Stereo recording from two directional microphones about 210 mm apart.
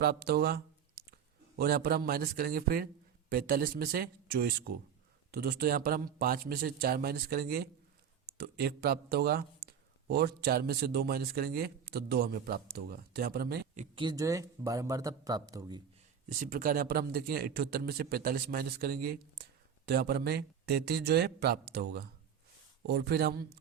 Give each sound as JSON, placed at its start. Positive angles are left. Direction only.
{"t": 0.0, "sound": "speech", "side_deg": -50}
{"t": 13.7, "sound": "speech", "side_deg": -25}
{"t": 16.4, "sound": "speech", "side_deg": -40}